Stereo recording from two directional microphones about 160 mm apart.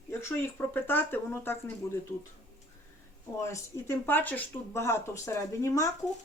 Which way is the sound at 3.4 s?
15° left (ahead or behind).